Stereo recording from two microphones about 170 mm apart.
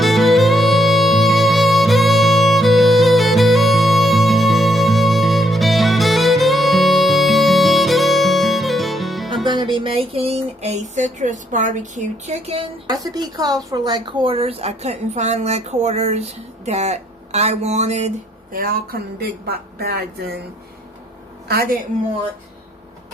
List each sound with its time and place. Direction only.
0.0 s music: centre (ahead or behind)
9.5 s a sound: 25° right (ahead or behind)
12.9 s a woman's voice: 20° right (ahead or behind); by 18.1 s 40° right (ahead or behind)
18.5 s speech: 60° right (ahead or behind)
21.4 s a woman's voice: 65° right (ahead or behind)